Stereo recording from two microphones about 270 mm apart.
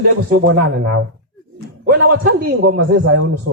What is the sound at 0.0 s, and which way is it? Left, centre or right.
A man's voice, right.